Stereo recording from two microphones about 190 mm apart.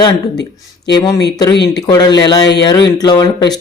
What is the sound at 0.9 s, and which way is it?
Speech, 20° left (ahead or behind).